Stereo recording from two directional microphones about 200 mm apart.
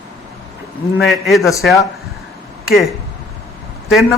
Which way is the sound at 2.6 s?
Centre (ahead or behind).